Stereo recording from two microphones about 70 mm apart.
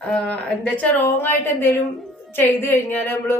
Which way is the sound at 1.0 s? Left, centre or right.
Left.